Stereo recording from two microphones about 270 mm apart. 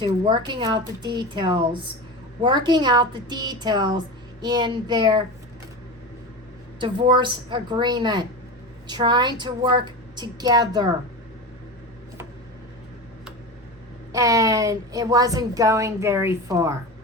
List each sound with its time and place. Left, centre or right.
0.0 s a woman's voice: centre
6.7 s a woman's voice: centre
14.1 s a woman's voice: centre